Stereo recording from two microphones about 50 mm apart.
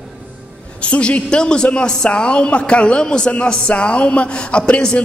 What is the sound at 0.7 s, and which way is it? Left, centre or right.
A woman's voice, left.